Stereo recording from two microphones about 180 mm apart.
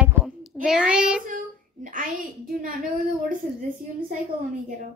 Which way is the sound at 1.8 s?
45° right (ahead or behind).